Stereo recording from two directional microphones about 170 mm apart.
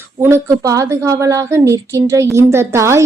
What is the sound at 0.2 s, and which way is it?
A woman's voice, 15° right (ahead or behind).